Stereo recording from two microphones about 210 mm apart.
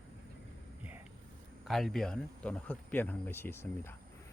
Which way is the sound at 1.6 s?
Centre (ahead or behind).